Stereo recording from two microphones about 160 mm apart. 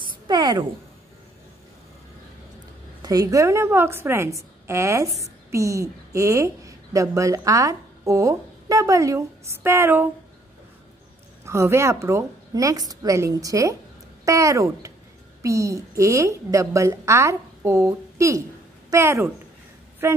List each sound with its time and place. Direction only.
0.3 s a woman's voice: 25° right (ahead or behind)
3.0 s a woman's voice: 20° right (ahead or behind)
11.4 s a woman's voice: 15° right (ahead or behind)